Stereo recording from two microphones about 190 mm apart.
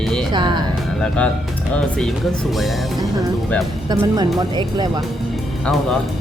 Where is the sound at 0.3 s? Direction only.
25° right (ahead or behind).